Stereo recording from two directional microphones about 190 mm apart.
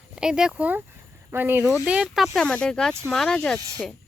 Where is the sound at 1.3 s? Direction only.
10° right (ahead or behind); by 3.6 s 5° left (ahead or behind).